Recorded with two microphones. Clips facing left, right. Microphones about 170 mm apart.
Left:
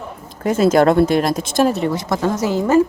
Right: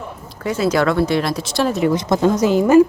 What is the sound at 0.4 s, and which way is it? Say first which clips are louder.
Speech: left 4 dB; 50° left (ahead or behind).